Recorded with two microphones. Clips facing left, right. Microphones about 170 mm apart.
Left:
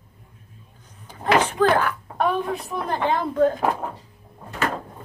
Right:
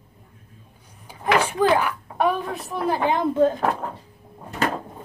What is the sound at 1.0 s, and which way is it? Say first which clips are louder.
Speech: left 1 dB; 10° right (ahead or behind).